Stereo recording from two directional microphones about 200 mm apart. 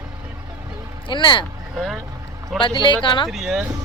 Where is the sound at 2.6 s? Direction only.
25° left (ahead or behind).